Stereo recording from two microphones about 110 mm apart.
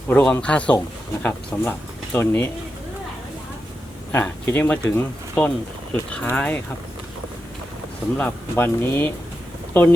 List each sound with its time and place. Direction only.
0.1 s speech: 15° left (ahead or behind)
4.1 s speech: 20° left (ahead or behind)
8.1 s speech: 20° left (ahead or behind)